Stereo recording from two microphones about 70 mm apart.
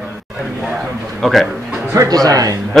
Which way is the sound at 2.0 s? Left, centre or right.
Right.